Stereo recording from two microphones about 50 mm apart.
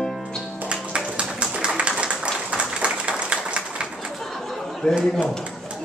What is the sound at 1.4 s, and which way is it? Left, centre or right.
Tap, right.